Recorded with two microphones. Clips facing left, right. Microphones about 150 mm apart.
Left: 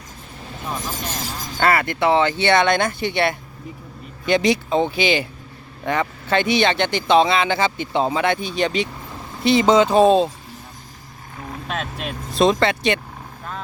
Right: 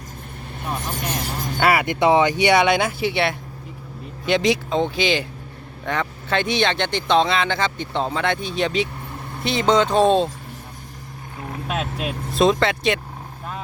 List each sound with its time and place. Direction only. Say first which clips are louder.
0.4 s vehicle: even; 65° right (ahead or behind)
1.6 s speech: right 1 dB; 15° right (ahead or behind); by 10.3 s 5° left (ahead or behind)
11.3 s speech: right 1 dB; 10° right (ahead or behind)